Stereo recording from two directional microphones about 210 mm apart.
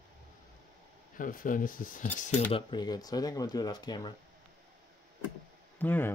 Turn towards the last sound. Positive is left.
turn(degrees=10)  # may be behind; listen again after turning